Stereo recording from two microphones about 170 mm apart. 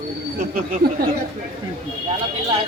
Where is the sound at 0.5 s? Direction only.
60° right (ahead or behind).